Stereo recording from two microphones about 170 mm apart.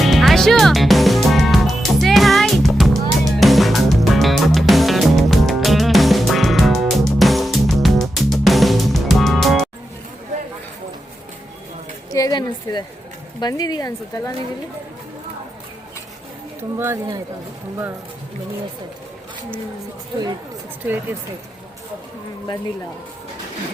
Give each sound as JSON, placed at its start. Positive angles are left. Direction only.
{"t": 0.0, "sound": "music", "side_deg": 0}
{"t": 12.1, "sound": "a sound", "side_deg": 25}
{"t": 13.4, "sound": "speech", "side_deg": 25}
{"t": 16.7, "sound": "speech", "side_deg": -15}
{"t": 20.8, "sound": "speech", "side_deg": -10}